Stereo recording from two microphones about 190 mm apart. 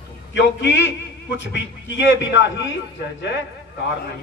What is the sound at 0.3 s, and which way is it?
A man's voice, 65° left (ahead or behind).